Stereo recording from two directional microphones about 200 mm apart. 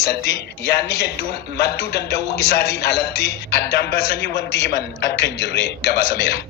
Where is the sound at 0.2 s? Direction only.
55° left (ahead or behind).